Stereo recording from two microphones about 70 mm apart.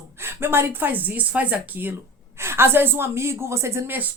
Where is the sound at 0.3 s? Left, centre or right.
Right.